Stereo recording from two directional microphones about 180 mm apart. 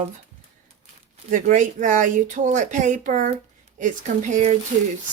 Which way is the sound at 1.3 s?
45° right (ahead or behind).